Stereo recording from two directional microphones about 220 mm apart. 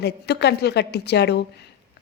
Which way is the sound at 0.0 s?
50° left (ahead or behind).